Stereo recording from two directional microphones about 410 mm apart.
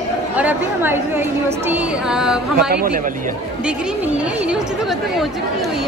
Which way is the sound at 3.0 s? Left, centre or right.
Centre.